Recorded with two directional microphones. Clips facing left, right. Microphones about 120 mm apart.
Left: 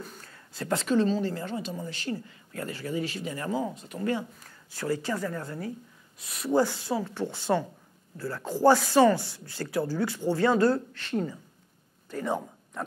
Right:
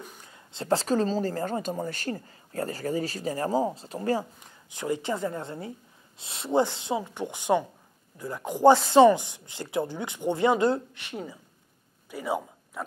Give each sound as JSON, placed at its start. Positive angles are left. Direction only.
{"t": 0.0, "sound": "a woman's voice", "side_deg": -15}
{"t": 4.4, "sound": "a man's voice", "side_deg": -20}